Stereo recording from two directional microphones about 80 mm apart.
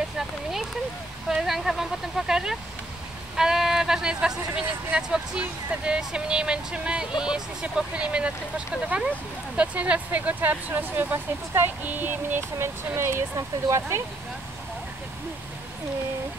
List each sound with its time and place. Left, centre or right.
1.3 s speech: centre
3.3 s a sound: centre
4.6 s speech: centre; by 14.0 s right